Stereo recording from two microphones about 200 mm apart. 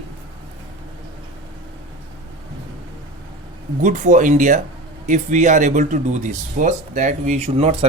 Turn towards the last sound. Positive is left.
turn(degrees=-30)  # may be behind; listen again after turning